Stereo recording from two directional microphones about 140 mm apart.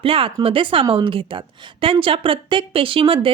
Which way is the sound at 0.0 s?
40° right (ahead or behind).